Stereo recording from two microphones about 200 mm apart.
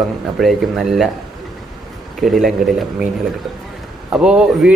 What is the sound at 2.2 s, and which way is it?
Speech, centre (ahead or behind).